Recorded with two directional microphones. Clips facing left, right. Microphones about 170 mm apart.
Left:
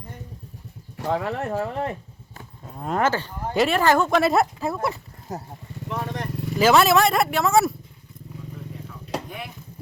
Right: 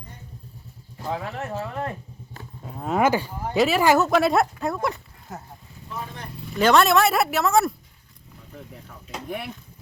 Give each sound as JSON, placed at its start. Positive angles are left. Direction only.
{"t": 0.9, "sound": "speech", "side_deg": 75}
{"t": 1.6, "sound": "speech", "side_deg": 30}
{"t": 2.6, "sound": "speech", "side_deg": 0}
{"t": 5.3, "sound": "speech", "side_deg": 40}
{"t": 5.9, "sound": "vehicle", "side_deg": 75}
{"t": 6.6, "sound": "speech", "side_deg": 5}